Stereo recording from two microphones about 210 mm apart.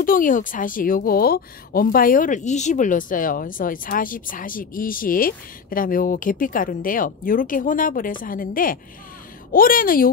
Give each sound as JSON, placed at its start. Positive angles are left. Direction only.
{"t": 0.0, "sound": "a woman's voice", "side_deg": 40}